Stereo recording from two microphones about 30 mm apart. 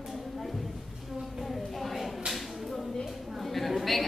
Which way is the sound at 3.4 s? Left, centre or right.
Centre.